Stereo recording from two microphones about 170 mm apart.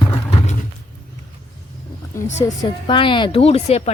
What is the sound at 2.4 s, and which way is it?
Speech, 25° left (ahead or behind).